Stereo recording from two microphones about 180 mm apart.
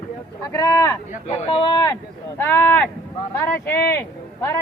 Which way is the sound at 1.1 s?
35° left (ahead or behind).